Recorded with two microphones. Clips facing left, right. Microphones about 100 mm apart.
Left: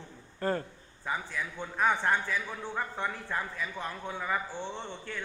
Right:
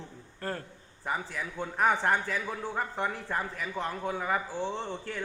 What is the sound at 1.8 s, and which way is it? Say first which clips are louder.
Speech: right 1 dB; 40° right (ahead or behind).